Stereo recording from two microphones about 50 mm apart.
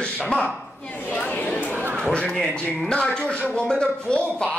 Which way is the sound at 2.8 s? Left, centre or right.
Centre.